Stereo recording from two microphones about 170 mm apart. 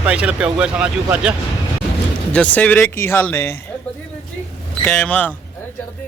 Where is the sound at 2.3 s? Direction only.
10° left (ahead or behind).